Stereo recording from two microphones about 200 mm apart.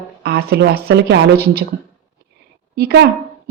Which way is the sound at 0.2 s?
55° right (ahead or behind).